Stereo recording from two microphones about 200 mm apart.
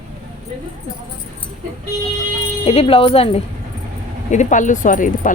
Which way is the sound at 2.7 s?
30° left (ahead or behind).